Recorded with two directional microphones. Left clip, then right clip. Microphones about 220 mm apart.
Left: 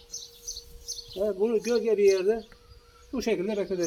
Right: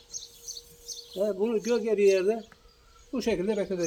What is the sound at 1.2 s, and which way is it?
A man's voice, 10° right (ahead or behind).